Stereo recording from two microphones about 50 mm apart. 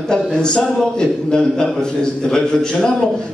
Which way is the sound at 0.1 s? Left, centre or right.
Centre.